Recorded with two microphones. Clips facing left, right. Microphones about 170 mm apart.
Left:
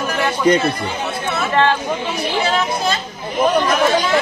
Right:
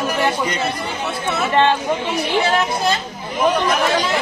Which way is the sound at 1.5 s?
25° right (ahead or behind).